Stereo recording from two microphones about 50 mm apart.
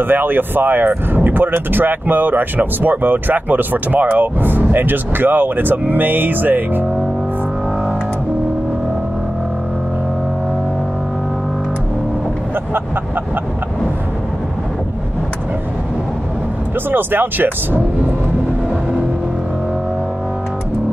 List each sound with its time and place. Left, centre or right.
0.0 s speech: right
16.9 s speech: right